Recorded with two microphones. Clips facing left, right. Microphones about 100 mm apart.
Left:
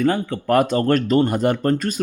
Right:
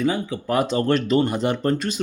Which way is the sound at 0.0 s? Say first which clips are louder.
Left 3 dB; 55° left (ahead or behind).